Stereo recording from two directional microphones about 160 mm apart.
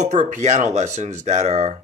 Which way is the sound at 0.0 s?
50° right (ahead or behind).